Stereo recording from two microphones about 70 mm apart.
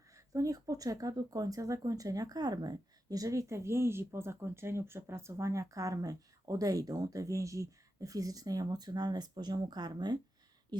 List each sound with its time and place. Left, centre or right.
0.3 s speech: right
10.7 s speech: right